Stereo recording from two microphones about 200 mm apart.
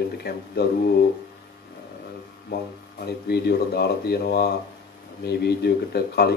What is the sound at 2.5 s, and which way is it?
Speech, 50° left (ahead or behind).